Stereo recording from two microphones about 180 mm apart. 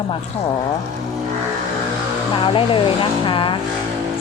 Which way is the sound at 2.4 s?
30° left (ahead or behind).